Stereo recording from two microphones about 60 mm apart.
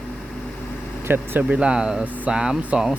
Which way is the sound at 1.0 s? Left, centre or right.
Right.